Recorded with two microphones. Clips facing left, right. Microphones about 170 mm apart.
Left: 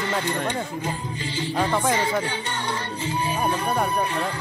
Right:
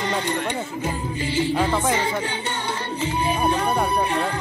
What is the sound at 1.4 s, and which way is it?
Speech, 15° right (ahead or behind).